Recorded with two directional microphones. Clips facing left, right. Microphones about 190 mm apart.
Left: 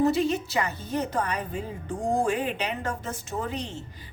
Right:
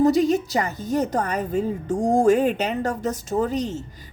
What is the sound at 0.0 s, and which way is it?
A woman's voice, 40° right (ahead or behind).